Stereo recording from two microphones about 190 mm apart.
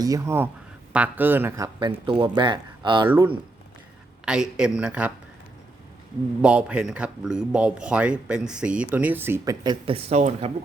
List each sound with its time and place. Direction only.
0.0 s speech: 15° right (ahead or behind)
3.1 s speech: 10° right (ahead or behind)
6.4 s speech: 5° right (ahead or behind); by 10.5 s 35° right (ahead or behind)